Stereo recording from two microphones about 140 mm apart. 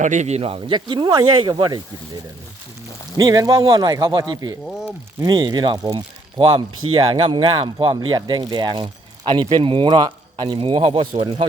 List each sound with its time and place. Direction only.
0.0 s speech: 60° right (ahead or behind); by 1.8 s 30° right (ahead or behind)
3.2 s speech: 25° right (ahead or behind)
6.4 s speech: 40° right (ahead or behind)